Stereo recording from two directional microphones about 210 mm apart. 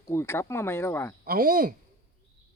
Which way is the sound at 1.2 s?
45° right (ahead or behind).